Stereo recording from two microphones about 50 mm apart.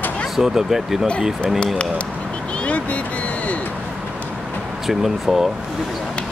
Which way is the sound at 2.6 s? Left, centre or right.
Left.